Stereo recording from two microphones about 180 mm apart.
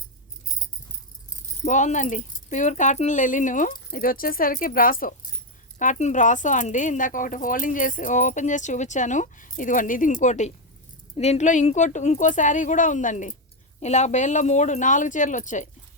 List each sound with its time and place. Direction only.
1.3 s speech: 45° left (ahead or behind)